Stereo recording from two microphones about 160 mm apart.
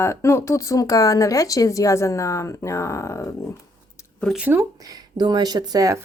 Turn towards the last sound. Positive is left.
turn(degrees=-20)  # may be behind; listen again after turning